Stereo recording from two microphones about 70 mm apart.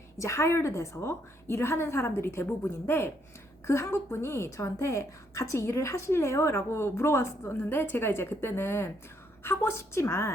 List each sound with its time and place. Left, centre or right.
0.2 s a woman's voice: left
7.5 s a woman's voice: left